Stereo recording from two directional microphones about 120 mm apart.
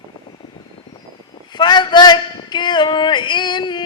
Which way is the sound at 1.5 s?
40° left (ahead or behind).